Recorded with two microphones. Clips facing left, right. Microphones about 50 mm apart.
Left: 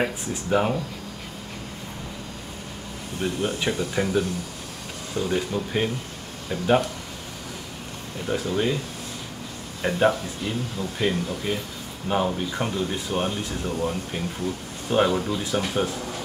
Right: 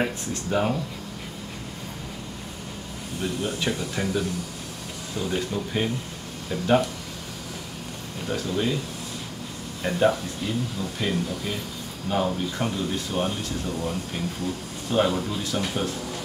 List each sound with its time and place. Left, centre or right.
0.0 s speech: centre
3.2 s speech: left
5.3 s speech: centre
8.3 s speech: centre
9.8 s speech: centre
15.5 s speech: centre